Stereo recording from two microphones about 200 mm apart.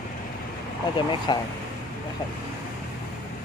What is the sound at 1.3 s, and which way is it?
Speech, 20° left (ahead or behind).